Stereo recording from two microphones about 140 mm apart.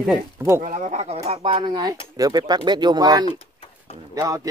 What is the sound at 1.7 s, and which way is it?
Speech, 25° right (ahead or behind).